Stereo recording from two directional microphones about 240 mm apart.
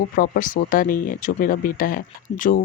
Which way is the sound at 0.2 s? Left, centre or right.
Left.